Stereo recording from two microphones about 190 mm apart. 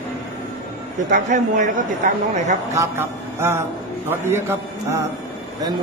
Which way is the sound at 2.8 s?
15° right (ahead or behind).